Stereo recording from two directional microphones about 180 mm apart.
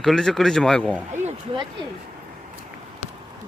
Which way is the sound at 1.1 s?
40° right (ahead or behind).